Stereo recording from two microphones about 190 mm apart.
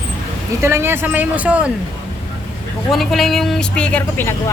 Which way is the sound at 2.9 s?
Centre (ahead or behind).